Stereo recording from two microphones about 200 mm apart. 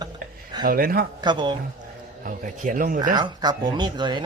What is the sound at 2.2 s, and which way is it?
Speech, 40° right (ahead or behind).